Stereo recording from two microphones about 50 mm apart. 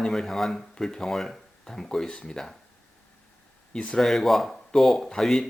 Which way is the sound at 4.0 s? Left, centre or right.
Centre.